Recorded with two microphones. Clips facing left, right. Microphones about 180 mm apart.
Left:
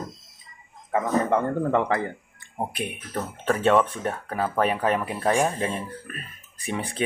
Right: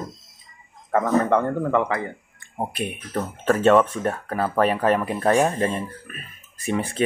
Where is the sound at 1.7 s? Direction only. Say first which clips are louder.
Right 1 dB; 35° left (ahead or behind).